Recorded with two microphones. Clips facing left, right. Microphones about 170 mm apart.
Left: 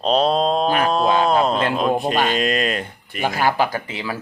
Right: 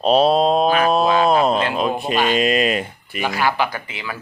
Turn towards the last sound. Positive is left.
turn(degrees=35)  # may be behind; listen again after turning